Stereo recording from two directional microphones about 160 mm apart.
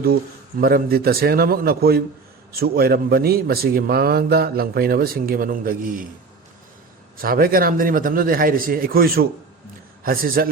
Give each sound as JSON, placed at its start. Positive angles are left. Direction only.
{"t": 0.6, "sound": "a man's voice", "side_deg": -70}
{"t": 7.2, "sound": "speech", "side_deg": -65}